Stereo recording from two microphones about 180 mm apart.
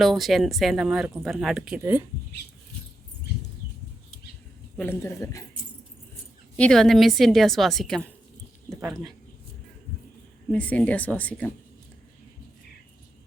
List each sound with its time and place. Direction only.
0.0 s speech: centre (ahead or behind)
4.8 s speech: 15° left (ahead or behind)
6.6 s speech: 5° left (ahead or behind)
10.5 s speech: 10° left (ahead or behind)